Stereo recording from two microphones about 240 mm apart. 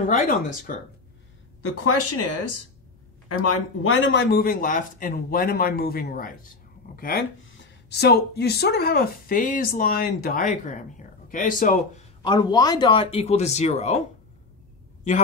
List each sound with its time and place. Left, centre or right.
0.0 s speech: left
1.6 s speech: left
7.4 s speech: left
12.2 s a man's voice: centre